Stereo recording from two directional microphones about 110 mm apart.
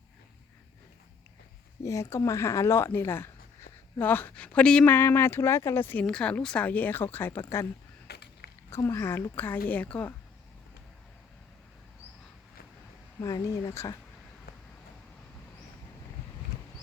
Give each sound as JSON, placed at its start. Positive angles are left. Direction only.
{"t": 1.8, "sound": "a woman's voice", "side_deg": 30}
{"t": 4.9, "sound": "a woman's voice", "side_deg": 20}
{"t": 8.7, "sound": "speech", "side_deg": 25}
{"t": 13.2, "sound": "speech", "side_deg": 30}